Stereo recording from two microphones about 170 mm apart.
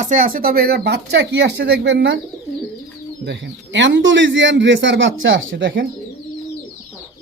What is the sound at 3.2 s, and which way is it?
A man's voice, 90° right.